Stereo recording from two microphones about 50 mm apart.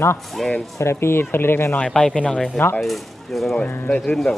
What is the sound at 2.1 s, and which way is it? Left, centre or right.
Speech, left.